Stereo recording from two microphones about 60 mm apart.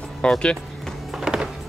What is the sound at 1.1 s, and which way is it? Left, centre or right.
Music, centre.